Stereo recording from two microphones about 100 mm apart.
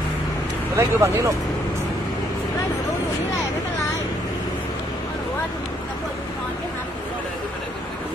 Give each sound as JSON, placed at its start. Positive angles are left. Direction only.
{"t": 0.7, "sound": "speech", "side_deg": -30}